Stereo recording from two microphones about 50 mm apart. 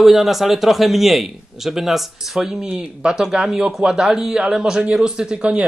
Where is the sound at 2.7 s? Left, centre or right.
Centre.